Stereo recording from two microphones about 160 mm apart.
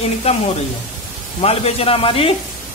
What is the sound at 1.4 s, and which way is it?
Speech, 40° left (ahead or behind).